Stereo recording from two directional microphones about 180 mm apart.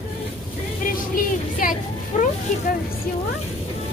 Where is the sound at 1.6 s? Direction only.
50° left (ahead or behind).